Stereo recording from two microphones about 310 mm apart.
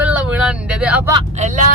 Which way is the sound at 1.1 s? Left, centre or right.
Right.